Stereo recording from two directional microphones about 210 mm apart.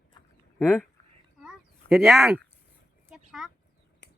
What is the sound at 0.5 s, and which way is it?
Speech, centre (ahead or behind).